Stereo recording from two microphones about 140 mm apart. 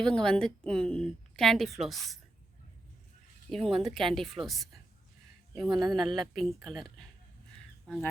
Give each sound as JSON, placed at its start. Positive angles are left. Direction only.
{"t": 0.0, "sound": "a woman's voice", "side_deg": 5}
{"t": 3.5, "sound": "a woman's voice", "side_deg": 0}
{"t": 5.6, "sound": "a woman's voice", "side_deg": -30}
{"t": 6.1, "sound": "a woman's voice", "side_deg": 0}